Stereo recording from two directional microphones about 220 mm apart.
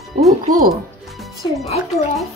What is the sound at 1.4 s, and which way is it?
Speech, centre (ahead or behind).